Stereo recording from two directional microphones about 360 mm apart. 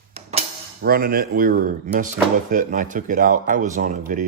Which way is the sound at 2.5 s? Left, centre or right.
Right.